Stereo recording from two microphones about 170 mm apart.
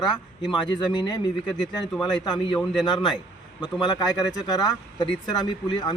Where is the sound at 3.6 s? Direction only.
25° left (ahead or behind).